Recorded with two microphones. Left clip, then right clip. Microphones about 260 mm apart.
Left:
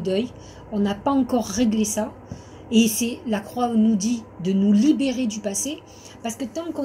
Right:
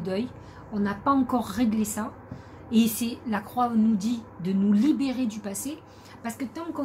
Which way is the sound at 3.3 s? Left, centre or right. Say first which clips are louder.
Even; centre.